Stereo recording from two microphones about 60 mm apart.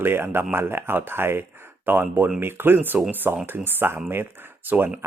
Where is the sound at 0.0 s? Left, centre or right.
Right.